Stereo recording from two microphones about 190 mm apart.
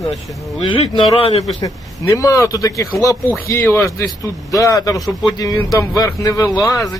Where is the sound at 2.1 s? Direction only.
15° left (ahead or behind).